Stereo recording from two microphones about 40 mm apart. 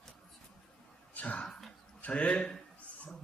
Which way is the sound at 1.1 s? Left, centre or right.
Left.